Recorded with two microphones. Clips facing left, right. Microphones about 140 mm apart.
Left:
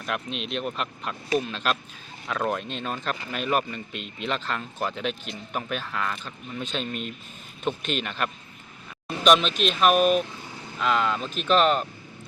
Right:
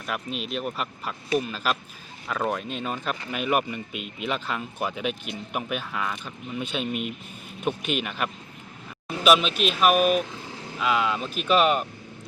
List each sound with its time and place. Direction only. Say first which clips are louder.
0.0 s speech: even; 5° right (ahead or behind)